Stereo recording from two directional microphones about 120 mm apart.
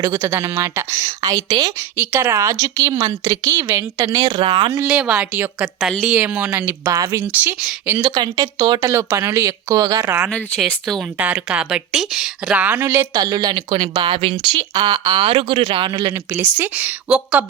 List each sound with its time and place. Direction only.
0.0 s a woman's voice: 20° right (ahead or behind)
2.0 s a woman's voice: 20° right (ahead or behind)
4.0 s a woman's voice: 30° right (ahead or behind)
4.3 s speech: 45° right (ahead or behind)
4.9 s a woman's voice: 10° right (ahead or behind)
6.7 s a woman's voice: 30° right (ahead or behind)
7.4 s a woman's voice: 15° right (ahead or behind)
8.0 s a woman's voice: 35° right (ahead or behind)
10.6 s speech: 5° left (ahead or behind)
11.2 s a woman's voice: 10° right (ahead or behind)
13.1 s speech: 30° right (ahead or behind); by 14.3 s 50° right (ahead or behind)
14.5 s speech: 35° right (ahead or behind)
16.3 s a woman's voice: 15° right (ahead or behind)